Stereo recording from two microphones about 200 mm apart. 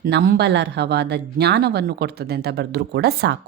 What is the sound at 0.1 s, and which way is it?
Speech, 55° right (ahead or behind).